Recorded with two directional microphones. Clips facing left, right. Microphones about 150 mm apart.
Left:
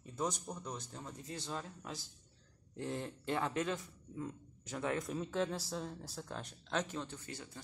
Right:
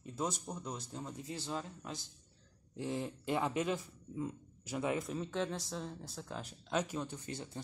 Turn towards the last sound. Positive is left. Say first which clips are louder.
# right 2 dB
turn(degrees=-10)  # may be behind; listen again after turning